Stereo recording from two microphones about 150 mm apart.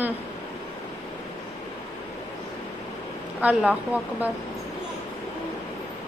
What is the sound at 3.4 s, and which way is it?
Speech, 10° right (ahead or behind).